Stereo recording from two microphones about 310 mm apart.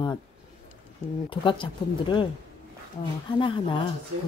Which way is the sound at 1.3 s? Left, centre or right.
Centre.